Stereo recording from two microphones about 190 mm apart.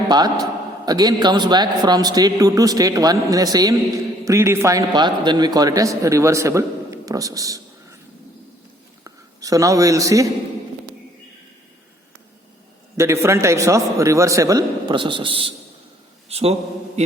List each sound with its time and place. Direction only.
0.1 s a man's voice: 20° right (ahead or behind)
9.0 s a man's voice: 20° right (ahead or behind)
13.0 s a man's voice: 15° right (ahead or behind); by 16.6 s 35° right (ahead or behind)